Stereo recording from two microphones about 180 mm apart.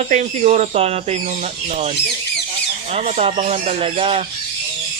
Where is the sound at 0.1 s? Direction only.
40° right (ahead or behind).